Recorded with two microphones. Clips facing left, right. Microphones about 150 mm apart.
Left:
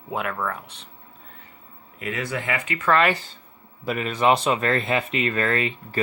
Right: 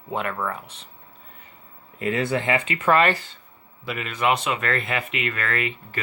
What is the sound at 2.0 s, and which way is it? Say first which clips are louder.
Speech: right 5 dB; 30° right (ahead or behind).